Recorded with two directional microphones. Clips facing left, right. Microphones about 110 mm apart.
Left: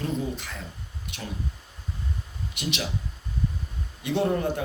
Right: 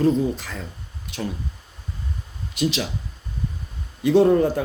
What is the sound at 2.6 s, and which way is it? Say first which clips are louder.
Speech: right 9 dB; 35° right (ahead or behind).